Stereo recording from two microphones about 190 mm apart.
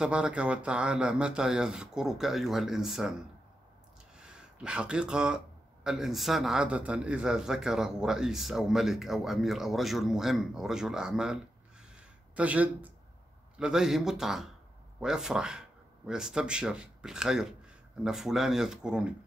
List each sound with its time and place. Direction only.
0.0 s a man's voice: 5° right (ahead or behind)
11.9 s a sound: 5° right (ahead or behind)
13.6 s a man's voice: 5° right (ahead or behind)